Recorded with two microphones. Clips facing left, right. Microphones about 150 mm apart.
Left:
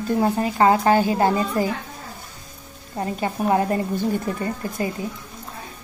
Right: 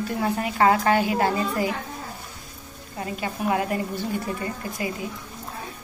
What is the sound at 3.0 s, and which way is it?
Speech, 35° left (ahead or behind).